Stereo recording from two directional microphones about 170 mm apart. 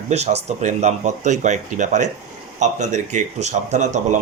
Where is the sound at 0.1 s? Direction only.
40° right (ahead or behind).